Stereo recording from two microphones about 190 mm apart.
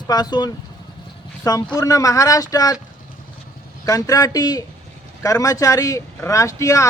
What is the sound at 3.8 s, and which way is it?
Speech, 20° left (ahead or behind).